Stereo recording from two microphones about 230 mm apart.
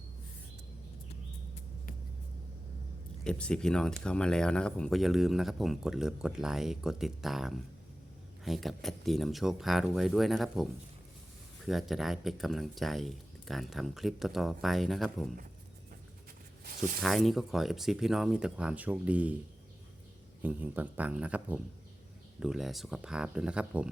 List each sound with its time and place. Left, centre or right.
3.2 s speech: centre
16.6 s speech: right
17.0 s speech: centre
20.4 s speech: centre